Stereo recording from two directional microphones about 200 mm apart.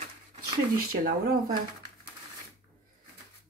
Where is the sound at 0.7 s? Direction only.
45° right (ahead or behind).